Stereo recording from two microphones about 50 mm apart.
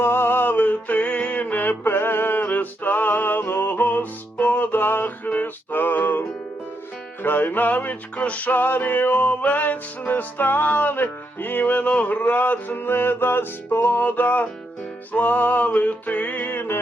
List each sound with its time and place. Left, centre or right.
0.0 s music: left
1.8 s music: left